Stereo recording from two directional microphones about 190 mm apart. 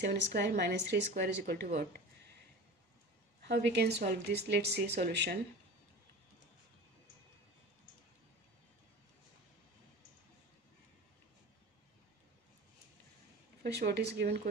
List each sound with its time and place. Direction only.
0.0 s a woman's voice: 65° right (ahead or behind)
3.4 s speech: 60° right (ahead or behind)
13.6 s speech: 60° right (ahead or behind)